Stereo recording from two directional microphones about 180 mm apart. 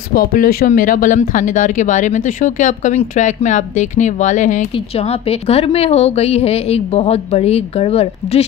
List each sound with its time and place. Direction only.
0.1 s speech: 55° left (ahead or behind); by 8.5 s 35° left (ahead or behind)